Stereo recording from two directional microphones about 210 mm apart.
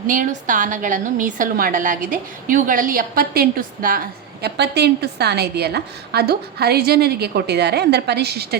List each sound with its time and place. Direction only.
0.1 s a woman's voice: 40° right (ahead or behind)
4.4 s a woman's voice: 55° right (ahead or behind)